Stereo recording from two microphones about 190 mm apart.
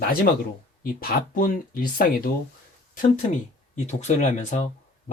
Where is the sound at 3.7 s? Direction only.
40° left (ahead or behind).